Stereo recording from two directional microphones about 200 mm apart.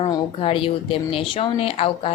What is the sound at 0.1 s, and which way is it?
A woman's voice, 25° left (ahead or behind).